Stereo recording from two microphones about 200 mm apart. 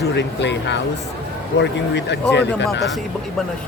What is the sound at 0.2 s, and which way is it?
Speech, 60° left (ahead or behind).